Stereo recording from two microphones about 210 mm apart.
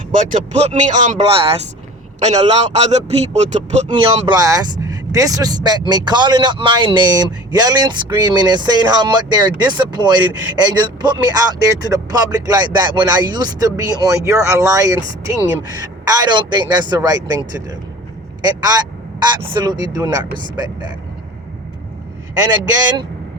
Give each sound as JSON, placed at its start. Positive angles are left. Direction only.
{"t": 0.3, "sound": "a man's voice", "side_deg": -35}
{"t": 19.4, "sound": "speech", "side_deg": -20}
{"t": 22.6, "sound": "speech", "side_deg": -20}